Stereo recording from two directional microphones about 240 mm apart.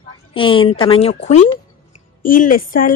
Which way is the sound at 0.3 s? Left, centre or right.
Left.